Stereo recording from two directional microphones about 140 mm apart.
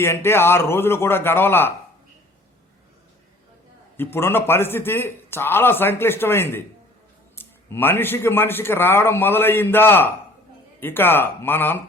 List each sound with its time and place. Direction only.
0.0 s a man's voice: 20° left (ahead or behind)
3.9 s a man's voice: 15° left (ahead or behind)